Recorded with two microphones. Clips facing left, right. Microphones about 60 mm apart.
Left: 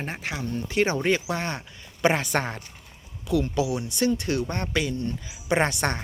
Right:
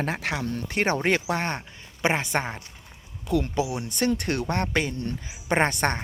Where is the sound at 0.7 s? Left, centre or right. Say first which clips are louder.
Left 1 dB; right.